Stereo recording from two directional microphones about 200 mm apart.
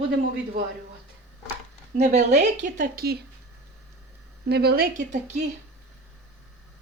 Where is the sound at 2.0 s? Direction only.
35° right (ahead or behind).